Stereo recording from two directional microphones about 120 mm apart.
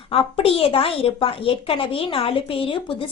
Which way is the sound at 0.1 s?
55° left (ahead or behind).